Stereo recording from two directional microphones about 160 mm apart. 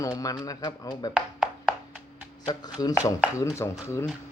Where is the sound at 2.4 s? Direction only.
25° left (ahead or behind).